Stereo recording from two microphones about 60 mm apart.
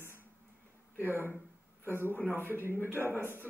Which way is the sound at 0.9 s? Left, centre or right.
Left.